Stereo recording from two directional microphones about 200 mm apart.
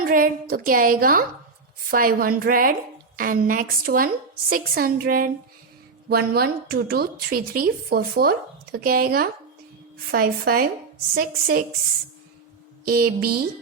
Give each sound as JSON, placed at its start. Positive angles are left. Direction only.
{"t": 0.0, "sound": "a woman's voice", "side_deg": -45}
{"t": 12.8, "sound": "a woman's voice", "side_deg": -50}